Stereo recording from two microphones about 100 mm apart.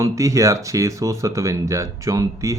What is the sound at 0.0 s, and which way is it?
Speech, 30° right (ahead or behind).